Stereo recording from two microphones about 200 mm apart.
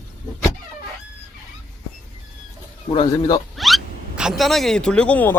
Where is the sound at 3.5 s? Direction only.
Centre (ahead or behind).